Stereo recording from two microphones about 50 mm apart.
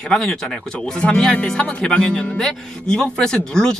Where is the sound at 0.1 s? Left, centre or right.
Centre.